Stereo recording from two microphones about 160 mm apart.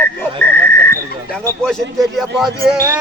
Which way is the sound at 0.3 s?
10° left (ahead or behind).